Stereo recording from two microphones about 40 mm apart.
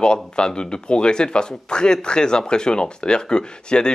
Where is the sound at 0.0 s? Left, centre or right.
Left.